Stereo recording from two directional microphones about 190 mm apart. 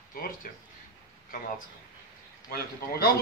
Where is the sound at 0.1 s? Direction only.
45° left (ahead or behind).